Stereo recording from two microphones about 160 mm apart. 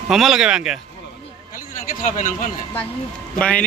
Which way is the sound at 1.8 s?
55° left (ahead or behind).